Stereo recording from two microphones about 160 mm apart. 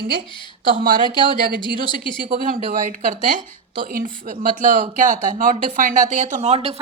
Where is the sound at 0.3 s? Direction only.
30° left (ahead or behind).